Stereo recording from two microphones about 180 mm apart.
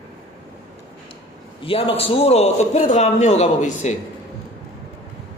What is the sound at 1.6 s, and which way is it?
A man's voice, 30° left (ahead or behind).